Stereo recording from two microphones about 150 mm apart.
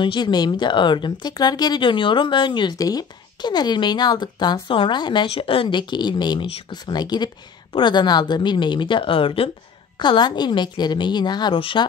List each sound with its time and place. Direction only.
0.0 s a woman's voice: 30° left (ahead or behind)